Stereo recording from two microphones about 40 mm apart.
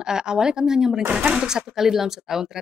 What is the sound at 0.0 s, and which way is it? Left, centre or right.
Speech, centre.